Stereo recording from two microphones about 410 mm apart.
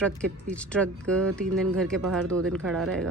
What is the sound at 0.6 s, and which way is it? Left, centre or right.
Speech, centre.